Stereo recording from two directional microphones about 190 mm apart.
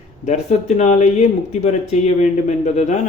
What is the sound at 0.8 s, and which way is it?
Speech, 40° left (ahead or behind).